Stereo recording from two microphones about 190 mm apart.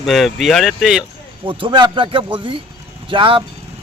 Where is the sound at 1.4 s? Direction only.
25° right (ahead or behind).